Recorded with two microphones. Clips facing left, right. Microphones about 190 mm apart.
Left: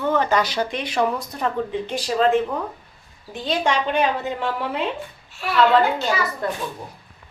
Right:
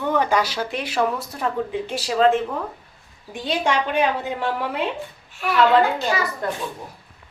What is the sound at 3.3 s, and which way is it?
Speech, 10° right (ahead or behind).